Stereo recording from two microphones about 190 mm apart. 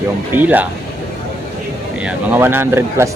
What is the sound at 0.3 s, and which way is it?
Speech, 10° right (ahead or behind).